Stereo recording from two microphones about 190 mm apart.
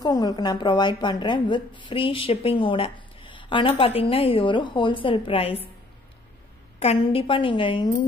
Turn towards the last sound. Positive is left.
turn(degrees=25)  # may be behind; listen again after turning